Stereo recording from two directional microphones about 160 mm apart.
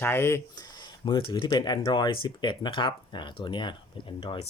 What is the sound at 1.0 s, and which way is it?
Speech, 30° left (ahead or behind).